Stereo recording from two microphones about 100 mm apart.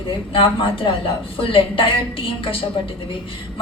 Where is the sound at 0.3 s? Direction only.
60° left (ahead or behind).